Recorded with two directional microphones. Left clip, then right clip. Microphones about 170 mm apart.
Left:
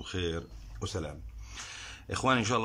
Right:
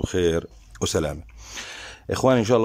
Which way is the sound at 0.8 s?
65° right (ahead or behind).